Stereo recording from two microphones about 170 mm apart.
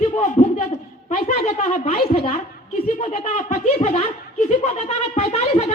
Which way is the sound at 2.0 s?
35° left (ahead or behind).